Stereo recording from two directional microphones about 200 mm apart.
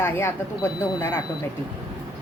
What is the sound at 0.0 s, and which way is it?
Speech, 10° left (ahead or behind).